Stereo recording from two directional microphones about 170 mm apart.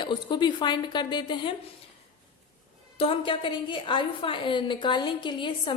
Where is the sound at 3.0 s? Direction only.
30° left (ahead or behind).